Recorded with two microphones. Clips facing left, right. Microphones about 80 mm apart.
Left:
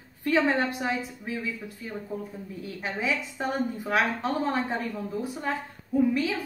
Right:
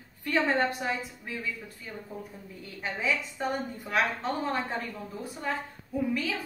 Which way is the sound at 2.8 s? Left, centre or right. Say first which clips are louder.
Left 1 dB; centre.